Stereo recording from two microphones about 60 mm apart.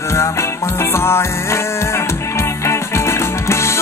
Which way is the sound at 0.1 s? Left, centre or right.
Left.